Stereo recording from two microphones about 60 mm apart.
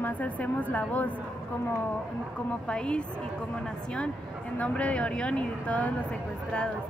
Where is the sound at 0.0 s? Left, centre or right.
Left.